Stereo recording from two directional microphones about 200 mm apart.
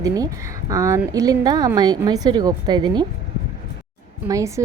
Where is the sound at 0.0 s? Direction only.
15° right (ahead or behind).